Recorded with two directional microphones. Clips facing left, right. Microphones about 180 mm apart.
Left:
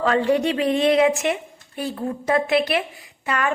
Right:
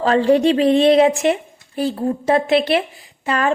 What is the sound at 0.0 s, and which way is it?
A woman's voice, 30° right (ahead or behind).